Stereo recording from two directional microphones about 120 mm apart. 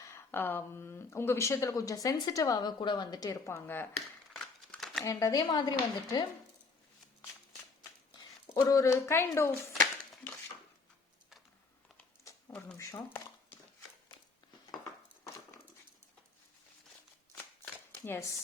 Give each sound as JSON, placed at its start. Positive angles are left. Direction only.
{"t": 0.0, "sound": "speech", "side_deg": 20}
{"t": 5.0, "sound": "a woman's voice", "side_deg": 30}
{"t": 8.1, "sound": "speech", "side_deg": 35}
{"t": 12.2, "sound": "a sound", "side_deg": 20}
{"t": 18.0, "sound": "speech", "side_deg": 20}